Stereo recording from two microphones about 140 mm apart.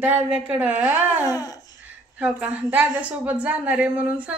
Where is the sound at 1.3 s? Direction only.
25° left (ahead or behind).